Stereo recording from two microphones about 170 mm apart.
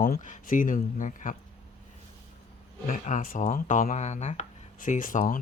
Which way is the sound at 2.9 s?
45° left (ahead or behind).